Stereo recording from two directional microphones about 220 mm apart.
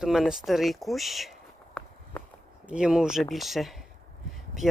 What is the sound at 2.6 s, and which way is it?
Speech, 5° right (ahead or behind).